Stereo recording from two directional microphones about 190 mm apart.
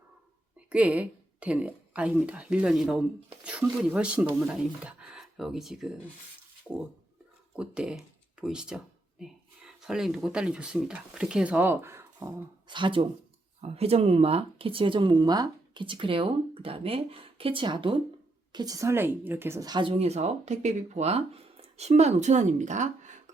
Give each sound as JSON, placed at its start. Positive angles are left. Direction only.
{"t": 0.7, "sound": "speech", "side_deg": -5}
{"t": 7.5, "sound": "speech", "side_deg": -5}
{"t": 12.6, "sound": "speech", "side_deg": -25}